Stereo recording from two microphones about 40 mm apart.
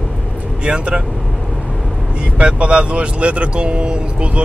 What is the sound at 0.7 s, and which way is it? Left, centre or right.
Speech, right.